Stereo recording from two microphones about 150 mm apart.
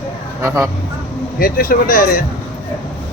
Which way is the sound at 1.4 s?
75° left (ahead or behind).